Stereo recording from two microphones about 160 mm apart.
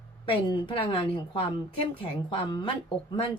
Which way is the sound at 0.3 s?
30° left (ahead or behind).